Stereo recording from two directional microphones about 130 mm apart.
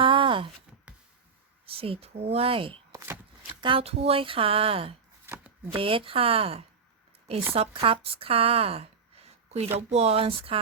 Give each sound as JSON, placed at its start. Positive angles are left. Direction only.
{"t": 0.0, "sound": "a sound", "side_deg": -40}
{"t": 1.8, "sound": "speech", "side_deg": -50}
{"t": 2.9, "sound": "a sound", "side_deg": -25}
{"t": 3.6, "sound": "speech", "side_deg": -40}
{"t": 5.2, "sound": "chopping", "side_deg": -15}
{"t": 5.7, "sound": "speech", "side_deg": -40}